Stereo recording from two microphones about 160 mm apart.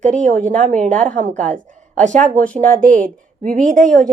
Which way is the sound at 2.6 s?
55° right (ahead or behind).